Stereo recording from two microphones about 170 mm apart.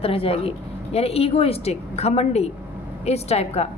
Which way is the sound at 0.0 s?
35° left (ahead or behind).